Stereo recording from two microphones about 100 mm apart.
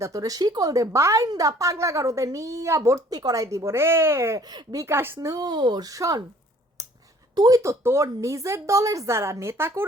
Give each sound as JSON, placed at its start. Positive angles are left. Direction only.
{"t": 0.0, "sound": "speech", "side_deg": -35}
{"t": 4.4, "sound": "speech", "side_deg": -40}
{"t": 5.3, "sound": "speech", "side_deg": -45}
{"t": 5.8, "sound": "speech", "side_deg": -35}
{"t": 6.8, "sound": "a sound", "side_deg": -30}
{"t": 7.3, "sound": "speech", "side_deg": -45}
{"t": 7.6, "sound": "a woman's voice", "side_deg": -30}